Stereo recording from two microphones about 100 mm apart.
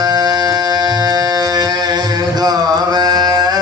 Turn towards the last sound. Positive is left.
turn(degrees=-40)  # may be behind; listen again after turning